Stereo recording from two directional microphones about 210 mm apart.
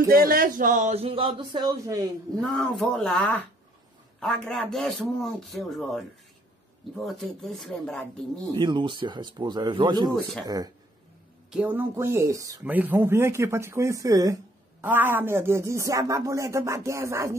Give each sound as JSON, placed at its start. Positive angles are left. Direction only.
{"t": 0.1, "sound": "speech", "side_deg": -45}
{"t": 2.5, "sound": "speech", "side_deg": 5}
{"t": 8.5, "sound": "speech", "side_deg": -20}